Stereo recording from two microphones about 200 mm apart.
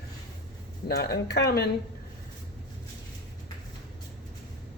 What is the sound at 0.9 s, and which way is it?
Speech, 50° left (ahead or behind).